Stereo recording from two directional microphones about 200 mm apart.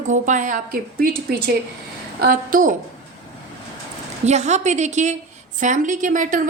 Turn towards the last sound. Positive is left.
turn(degrees=-40)  # may be behind; listen again after turning